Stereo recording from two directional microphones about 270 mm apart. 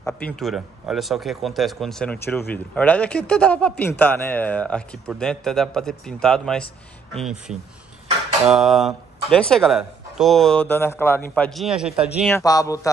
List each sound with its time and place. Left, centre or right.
0.0 s speech: centre
12.4 s a man's voice: centre